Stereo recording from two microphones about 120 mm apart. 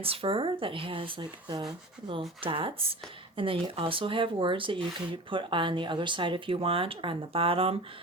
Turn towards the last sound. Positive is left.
turn(degrees=-50)  # may be behind; listen again after turning